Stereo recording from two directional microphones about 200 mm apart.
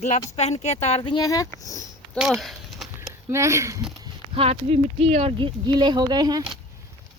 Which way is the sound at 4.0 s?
30° right (ahead or behind).